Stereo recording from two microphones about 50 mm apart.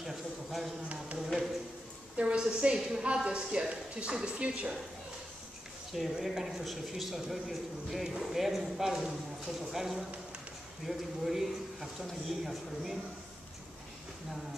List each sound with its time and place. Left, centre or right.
0.0 s a sound: centre
2.1 s a woman's voice: right
5.9 s a man's voice: centre